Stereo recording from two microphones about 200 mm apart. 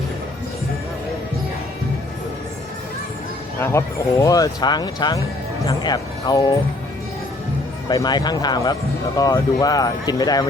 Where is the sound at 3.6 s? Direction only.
15° left (ahead or behind).